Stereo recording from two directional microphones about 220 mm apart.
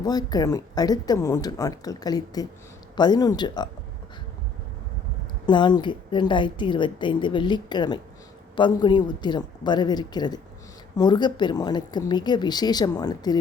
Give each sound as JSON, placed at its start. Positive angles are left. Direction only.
{"t": 0.0, "sound": "a woman's voice", "side_deg": 15}
{"t": 5.5, "sound": "a woman's voice", "side_deg": 20}